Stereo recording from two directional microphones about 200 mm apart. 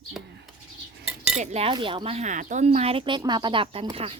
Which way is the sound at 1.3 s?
35° right (ahead or behind).